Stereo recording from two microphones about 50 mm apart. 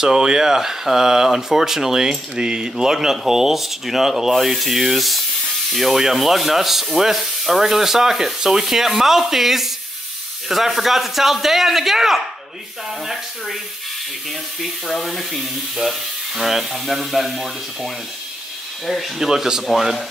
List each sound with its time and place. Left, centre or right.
0.0 s speech: centre
14.6 s speech: centre